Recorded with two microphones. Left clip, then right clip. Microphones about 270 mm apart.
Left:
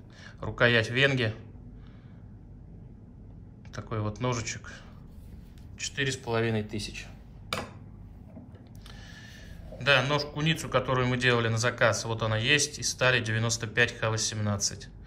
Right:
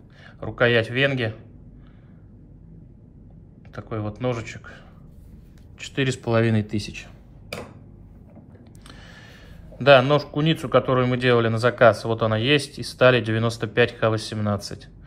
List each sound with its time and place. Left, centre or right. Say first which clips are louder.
0.2 s speech: right 4 dB; centre
3.7 s a man's voice: right 4 dB; centre
5.8 s speech: right 5 dB; centre; by 7.1 s right
8.8 s a sound: right 4 dB; right
9.8 s a man's voice: right 9 dB; centre